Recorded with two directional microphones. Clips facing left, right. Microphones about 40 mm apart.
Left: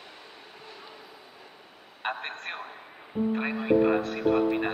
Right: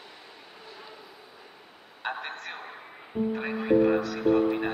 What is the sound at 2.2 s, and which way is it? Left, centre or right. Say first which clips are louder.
Speech: left 1 dB; left.